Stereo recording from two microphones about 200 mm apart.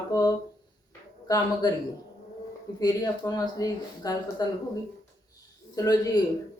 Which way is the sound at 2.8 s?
20° left (ahead or behind).